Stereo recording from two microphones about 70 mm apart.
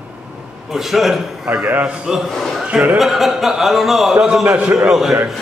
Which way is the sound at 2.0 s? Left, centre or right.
Centre.